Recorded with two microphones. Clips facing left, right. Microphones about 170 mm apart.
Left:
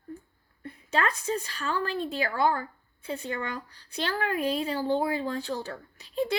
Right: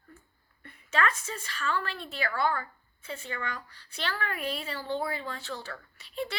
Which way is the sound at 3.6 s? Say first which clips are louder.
Left 5 dB; 40° left (ahead or behind).